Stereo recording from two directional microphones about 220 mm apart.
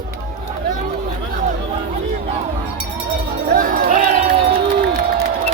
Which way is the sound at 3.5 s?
40° right (ahead or behind).